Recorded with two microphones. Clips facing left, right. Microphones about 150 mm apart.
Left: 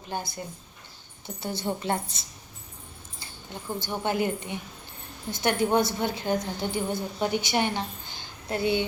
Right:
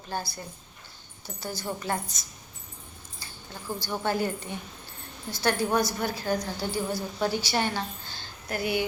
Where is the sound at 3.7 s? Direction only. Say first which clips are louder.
Even; 20° left (ahead or behind).